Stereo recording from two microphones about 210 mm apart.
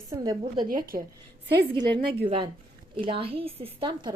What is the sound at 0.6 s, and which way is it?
Speech, 45° right (ahead or behind).